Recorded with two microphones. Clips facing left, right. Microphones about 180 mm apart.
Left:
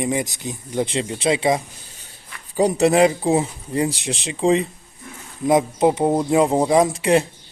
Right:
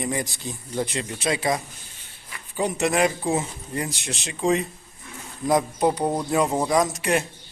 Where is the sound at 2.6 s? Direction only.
35° left (ahead or behind).